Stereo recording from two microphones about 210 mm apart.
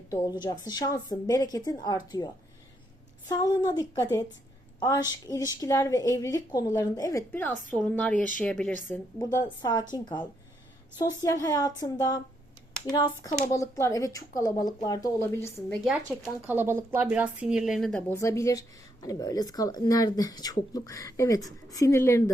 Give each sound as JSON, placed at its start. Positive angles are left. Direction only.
{"t": 0.1, "sound": "speech", "side_deg": 20}
{"t": 3.2, "sound": "a woman's voice", "side_deg": 20}
{"t": 9.1, "sound": "speech", "side_deg": 15}
{"t": 15.7, "sound": "a woman's voice", "side_deg": 0}
{"t": 18.1, "sound": "speech", "side_deg": 15}